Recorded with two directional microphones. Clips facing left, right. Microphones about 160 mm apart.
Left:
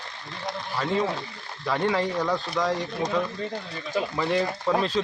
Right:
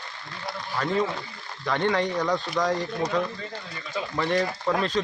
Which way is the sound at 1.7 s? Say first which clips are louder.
Even; 5° left (ahead or behind).